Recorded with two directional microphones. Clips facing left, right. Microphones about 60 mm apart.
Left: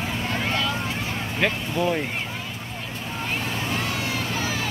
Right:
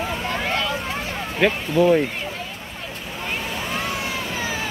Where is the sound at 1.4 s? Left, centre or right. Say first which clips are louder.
Right 6 dB; centre.